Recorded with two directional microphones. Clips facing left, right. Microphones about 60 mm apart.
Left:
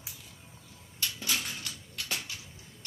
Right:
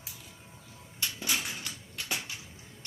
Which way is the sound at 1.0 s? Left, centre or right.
Centre.